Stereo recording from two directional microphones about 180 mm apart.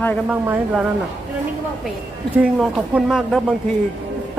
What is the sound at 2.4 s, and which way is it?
Speech, 5° right (ahead or behind).